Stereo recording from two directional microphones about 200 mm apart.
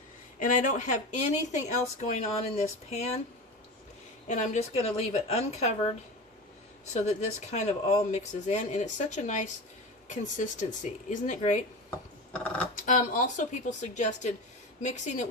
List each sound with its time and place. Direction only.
0.3 s speech: 40° left (ahead or behind)
4.3 s speech: 35° left (ahead or behind)
6.9 s speech: 35° left (ahead or behind)
12.7 s speech: 40° left (ahead or behind)